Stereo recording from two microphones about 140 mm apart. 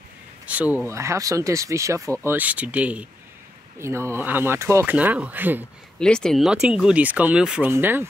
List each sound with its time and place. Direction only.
0.5 s speech: 10° right (ahead or behind)
4.9 s speech: 10° right (ahead or behind)
5.9 s speech: 5° left (ahead or behind)
7.7 s speech: 15° right (ahead or behind)